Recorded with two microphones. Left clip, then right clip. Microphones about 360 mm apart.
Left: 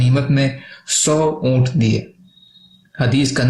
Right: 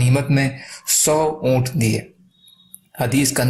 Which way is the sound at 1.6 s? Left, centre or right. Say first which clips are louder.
Left 2 dB; centre.